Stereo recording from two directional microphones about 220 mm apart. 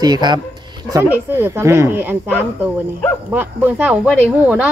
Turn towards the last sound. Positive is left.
turn(degrees=-5)  # may be behind; listen again after turning